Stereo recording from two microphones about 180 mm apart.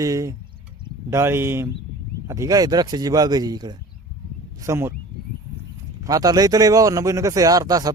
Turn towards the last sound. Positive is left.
turn(degrees=-20)  # may be behind; listen again after turning